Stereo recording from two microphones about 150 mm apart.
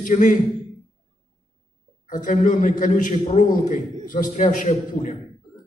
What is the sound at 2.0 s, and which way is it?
A man's voice, 65° left (ahead or behind).